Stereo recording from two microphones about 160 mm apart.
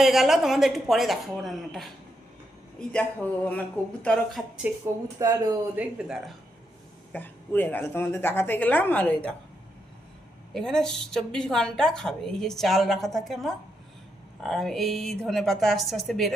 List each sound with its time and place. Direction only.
0.0 s a woman's voice: centre (ahead or behind)
5.2 s speech: 20° right (ahead or behind)
5.7 s a woman's voice: 5° right (ahead or behind)
7.1 s a woman's voice: 10° left (ahead or behind)
10.5 s a woman's voice: 5° left (ahead or behind)